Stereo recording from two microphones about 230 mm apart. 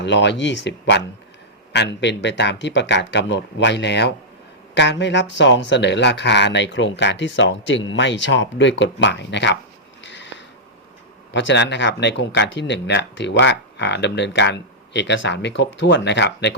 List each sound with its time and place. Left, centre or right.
0.0 s speech: left
10.0 s a sound: left
11.3 s speech: left